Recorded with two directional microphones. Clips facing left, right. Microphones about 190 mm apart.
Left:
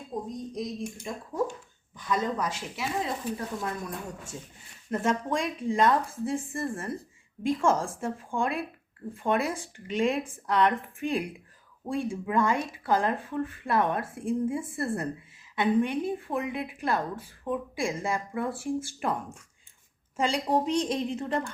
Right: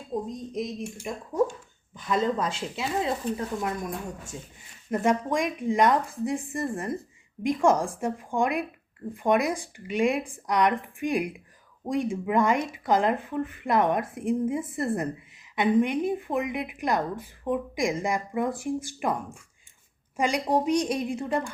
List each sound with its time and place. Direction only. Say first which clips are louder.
0.3 s speech: right 2 dB; 20° right (ahead or behind)
2.0 s speech: right 3 dB; 25° right (ahead or behind)
3.3 s a woman's voice: right 3 dB; 15° right (ahead or behind)